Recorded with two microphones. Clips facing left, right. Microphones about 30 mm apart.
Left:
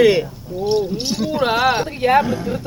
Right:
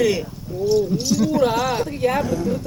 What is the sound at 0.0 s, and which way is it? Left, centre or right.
Speech, left.